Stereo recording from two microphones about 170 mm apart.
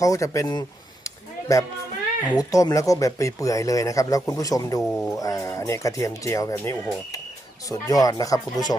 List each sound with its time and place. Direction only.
0.0 s speech: 20° left (ahead or behind)
1.0 s a sound: 20° left (ahead or behind)
2.4 s speech: 20° left (ahead or behind)
4.8 s speech: centre (ahead or behind)
5.1 s speech: 20° left (ahead or behind)